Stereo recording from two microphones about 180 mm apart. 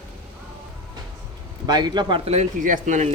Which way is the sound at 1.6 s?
20° right (ahead or behind).